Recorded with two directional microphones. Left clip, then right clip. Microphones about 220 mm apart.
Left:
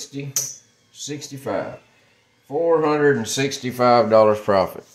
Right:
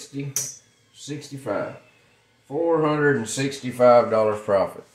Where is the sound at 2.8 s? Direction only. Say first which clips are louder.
Left 3 dB; 40° left (ahead or behind).